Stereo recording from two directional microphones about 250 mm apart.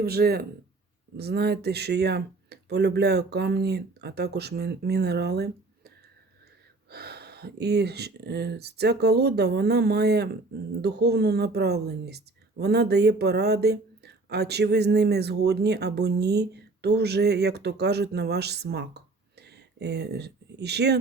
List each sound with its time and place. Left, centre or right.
0.0 s speech: right
6.9 s speech: right